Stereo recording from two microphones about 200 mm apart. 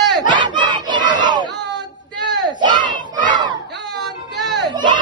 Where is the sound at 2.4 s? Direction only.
20° right (ahead or behind).